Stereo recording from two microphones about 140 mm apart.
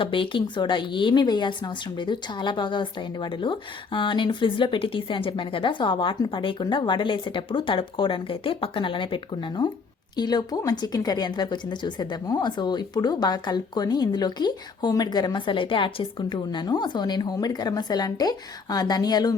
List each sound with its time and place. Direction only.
0.0 s speech: 40° left (ahead or behind)